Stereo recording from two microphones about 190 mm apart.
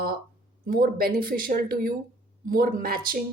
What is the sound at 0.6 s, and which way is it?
Speech, 50° right (ahead or behind).